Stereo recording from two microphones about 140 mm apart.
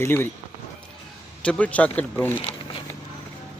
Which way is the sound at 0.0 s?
15° left (ahead or behind).